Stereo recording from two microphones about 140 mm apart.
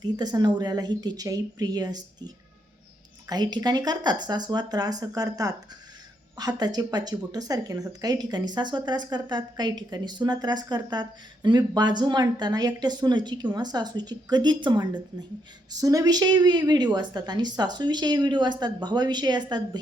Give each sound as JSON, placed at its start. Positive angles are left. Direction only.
{"t": 0.0, "sound": "a woman's voice", "side_deg": -30}